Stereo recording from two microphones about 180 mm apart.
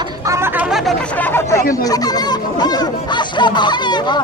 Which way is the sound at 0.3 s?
15° right (ahead or behind).